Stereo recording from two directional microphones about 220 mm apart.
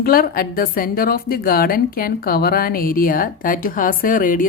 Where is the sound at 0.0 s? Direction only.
40° left (ahead or behind).